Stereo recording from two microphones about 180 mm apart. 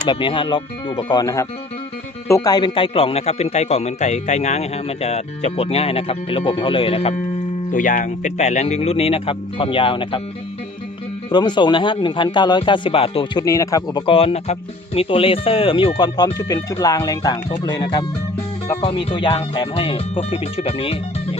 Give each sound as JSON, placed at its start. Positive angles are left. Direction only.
{"t": 0.1, "sound": "speech", "side_deg": 25}
{"t": 7.7, "sound": "speech", "side_deg": 45}
{"t": 11.3, "sound": "speech", "side_deg": 25}
{"t": 13.4, "sound": "speech", "side_deg": 20}